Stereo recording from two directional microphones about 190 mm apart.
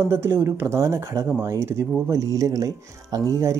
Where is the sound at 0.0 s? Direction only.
10° right (ahead or behind).